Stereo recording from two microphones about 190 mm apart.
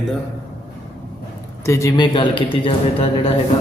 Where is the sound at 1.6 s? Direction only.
15° left (ahead or behind).